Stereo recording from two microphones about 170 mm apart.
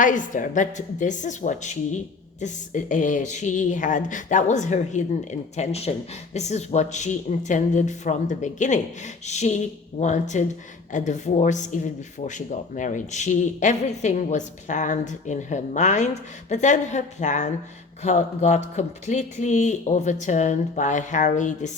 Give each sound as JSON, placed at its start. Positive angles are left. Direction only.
{"t": 0.0, "sound": "speech", "side_deg": 50}